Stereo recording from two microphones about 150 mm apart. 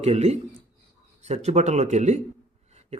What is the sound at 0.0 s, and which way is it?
A man's voice, 45° right (ahead or behind).